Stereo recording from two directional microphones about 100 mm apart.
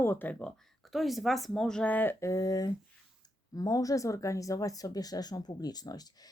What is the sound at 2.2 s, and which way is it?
Speech, 35° left (ahead or behind).